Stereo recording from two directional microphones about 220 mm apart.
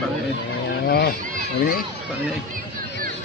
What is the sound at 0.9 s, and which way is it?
Speech, 45° left (ahead or behind).